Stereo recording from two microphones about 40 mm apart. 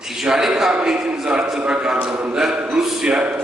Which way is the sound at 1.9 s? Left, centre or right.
Right.